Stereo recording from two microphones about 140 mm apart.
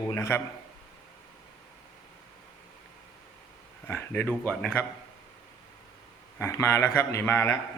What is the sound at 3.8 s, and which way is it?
A man's voice, 15° left (ahead or behind).